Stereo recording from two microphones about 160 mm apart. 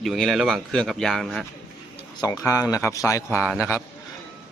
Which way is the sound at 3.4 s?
5° right (ahead or behind).